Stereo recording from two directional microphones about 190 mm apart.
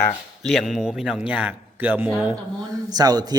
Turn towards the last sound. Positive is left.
turn(degrees=-20)  # may be behind; listen again after turning